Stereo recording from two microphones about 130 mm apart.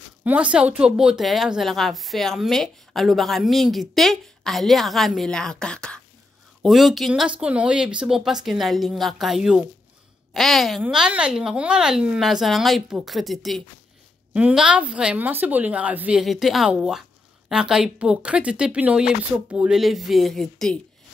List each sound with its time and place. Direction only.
0.2 s a woman's voice: 10° right (ahead or behind)